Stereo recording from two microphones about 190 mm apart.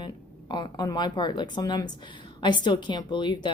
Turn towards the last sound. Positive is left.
turn(degrees=25)  # may be behind; listen again after turning